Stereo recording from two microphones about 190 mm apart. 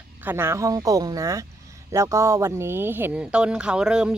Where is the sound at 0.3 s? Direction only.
15° right (ahead or behind).